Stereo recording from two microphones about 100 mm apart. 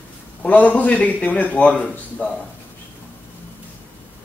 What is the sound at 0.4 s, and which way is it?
A man's voice, 15° left (ahead or behind).